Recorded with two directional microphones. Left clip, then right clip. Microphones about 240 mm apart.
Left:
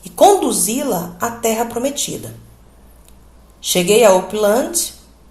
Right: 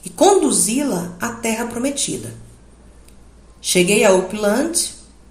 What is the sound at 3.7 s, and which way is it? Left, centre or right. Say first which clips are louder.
A woman's voice: left 3 dB; left.